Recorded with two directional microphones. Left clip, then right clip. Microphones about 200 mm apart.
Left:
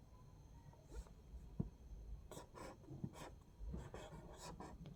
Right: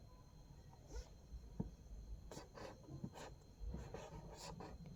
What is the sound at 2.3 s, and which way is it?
Writing, 5° left (ahead or behind).